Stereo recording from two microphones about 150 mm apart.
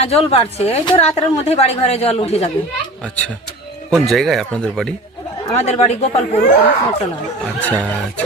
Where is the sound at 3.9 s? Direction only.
Centre (ahead or behind).